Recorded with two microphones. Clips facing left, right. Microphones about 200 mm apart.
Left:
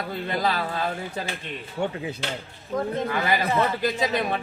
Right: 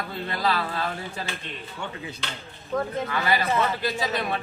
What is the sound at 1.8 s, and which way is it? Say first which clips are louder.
Speech: left 9 dB; 35° left (ahead or behind).